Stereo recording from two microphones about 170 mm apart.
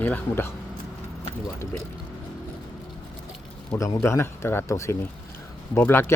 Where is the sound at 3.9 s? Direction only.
15° left (ahead or behind).